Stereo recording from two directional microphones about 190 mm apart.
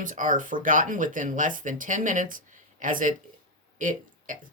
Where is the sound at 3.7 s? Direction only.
45° right (ahead or behind).